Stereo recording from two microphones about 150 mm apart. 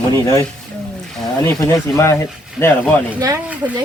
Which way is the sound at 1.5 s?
20° left (ahead or behind).